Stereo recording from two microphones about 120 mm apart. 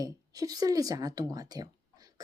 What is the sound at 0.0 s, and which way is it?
Speech, 30° right (ahead or behind).